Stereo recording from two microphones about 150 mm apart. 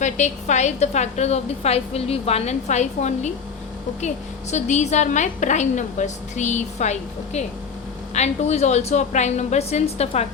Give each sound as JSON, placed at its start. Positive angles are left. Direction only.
{"t": 0.0, "sound": "a woman's voice", "side_deg": 50}
{"t": 4.5, "sound": "a woman's voice", "side_deg": 50}